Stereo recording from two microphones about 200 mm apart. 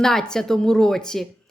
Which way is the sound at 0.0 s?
5° left (ahead or behind).